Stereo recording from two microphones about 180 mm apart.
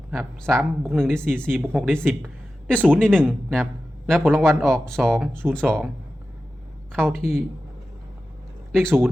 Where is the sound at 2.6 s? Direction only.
5° left (ahead or behind).